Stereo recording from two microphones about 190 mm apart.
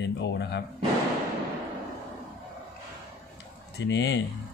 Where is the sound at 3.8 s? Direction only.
65° left (ahead or behind).